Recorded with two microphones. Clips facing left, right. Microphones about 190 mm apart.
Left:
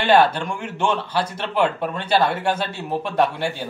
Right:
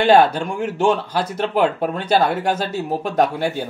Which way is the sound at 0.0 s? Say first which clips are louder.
Right 3 dB; 40° right (ahead or behind).